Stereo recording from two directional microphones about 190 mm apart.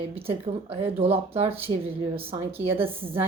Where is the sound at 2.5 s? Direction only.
10° right (ahead or behind).